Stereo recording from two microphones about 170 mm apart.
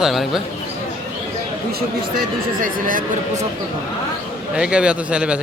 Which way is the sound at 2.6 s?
55° right (ahead or behind).